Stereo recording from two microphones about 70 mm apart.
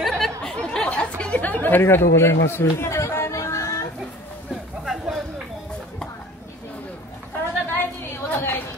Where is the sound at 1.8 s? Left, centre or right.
Left.